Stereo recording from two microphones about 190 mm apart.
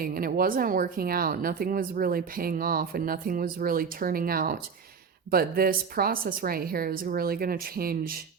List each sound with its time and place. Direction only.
0.0 s speech: 50° right (ahead or behind)